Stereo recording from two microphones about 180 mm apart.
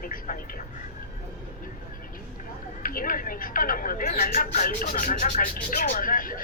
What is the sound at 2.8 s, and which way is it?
Speech, 50° left (ahead or behind).